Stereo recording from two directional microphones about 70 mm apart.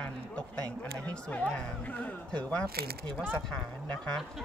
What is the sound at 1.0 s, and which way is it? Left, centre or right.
Speech, centre.